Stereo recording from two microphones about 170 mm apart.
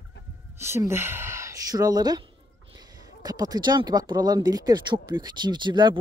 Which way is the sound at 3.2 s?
25° right (ahead or behind).